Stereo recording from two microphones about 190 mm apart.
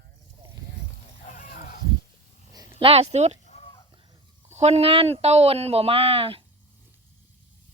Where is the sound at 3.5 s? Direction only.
30° left (ahead or behind).